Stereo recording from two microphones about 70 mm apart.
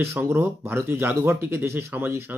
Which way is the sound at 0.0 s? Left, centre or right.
Right.